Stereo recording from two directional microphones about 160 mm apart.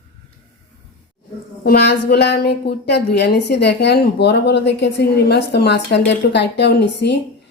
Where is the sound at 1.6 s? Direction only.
80° left.